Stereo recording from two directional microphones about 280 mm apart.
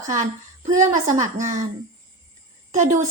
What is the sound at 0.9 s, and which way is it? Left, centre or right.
Speech, right.